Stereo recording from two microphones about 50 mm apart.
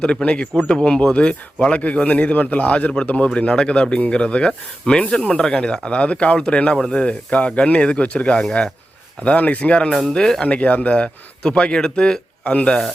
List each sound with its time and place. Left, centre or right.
0.0 s speech: centre
10.1 s speech: centre
10.4 s speech: left